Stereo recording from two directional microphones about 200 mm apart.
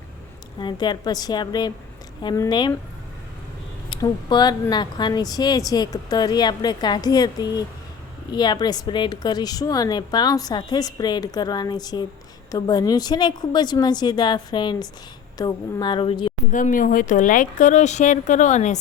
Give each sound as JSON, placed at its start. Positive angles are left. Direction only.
{"t": 0.6, "sound": "a woman's voice", "side_deg": 20}
{"t": 3.8, "sound": "a woman's voice", "side_deg": 20}
{"t": 16.5, "sound": "speech", "side_deg": 40}